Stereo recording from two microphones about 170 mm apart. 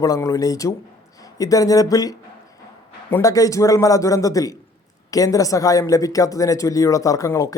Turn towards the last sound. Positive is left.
turn(degrees=20)  # may be behind; listen again after turning